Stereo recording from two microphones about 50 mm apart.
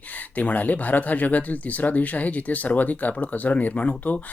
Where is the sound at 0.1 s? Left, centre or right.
Left.